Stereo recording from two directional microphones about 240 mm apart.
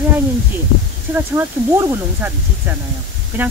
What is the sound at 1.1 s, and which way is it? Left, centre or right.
Speech, centre.